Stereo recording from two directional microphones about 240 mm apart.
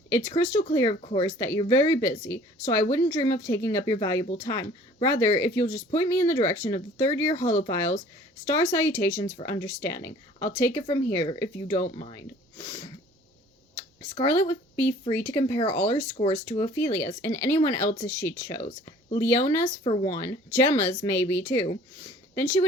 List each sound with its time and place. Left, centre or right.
0.1 s a woman's voice: centre
14.2 s a woman's voice: centre
16.5 s a woman's voice: centre
19.8 s speech: left
20.1 s a woman's voice: centre